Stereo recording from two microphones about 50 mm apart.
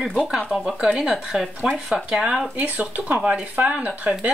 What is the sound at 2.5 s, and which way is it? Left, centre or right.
Speech, right.